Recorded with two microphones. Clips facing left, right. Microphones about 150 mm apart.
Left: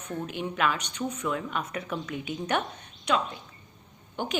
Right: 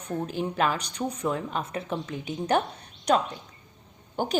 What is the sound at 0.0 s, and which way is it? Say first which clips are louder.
A woman's voice: right 3 dB; 35° right (ahead or behind).